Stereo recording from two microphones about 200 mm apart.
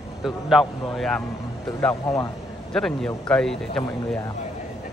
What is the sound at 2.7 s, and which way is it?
Speech, centre (ahead or behind).